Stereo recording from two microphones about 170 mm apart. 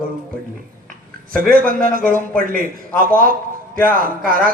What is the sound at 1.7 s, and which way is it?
A man's voice, 55° right (ahead or behind).